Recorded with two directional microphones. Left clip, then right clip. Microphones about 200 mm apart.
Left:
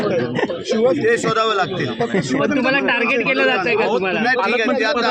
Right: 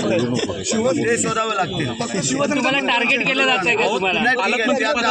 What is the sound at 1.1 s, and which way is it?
Speech, 10° left (ahead or behind).